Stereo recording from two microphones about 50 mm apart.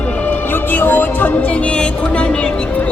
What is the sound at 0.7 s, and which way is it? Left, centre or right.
Music, left.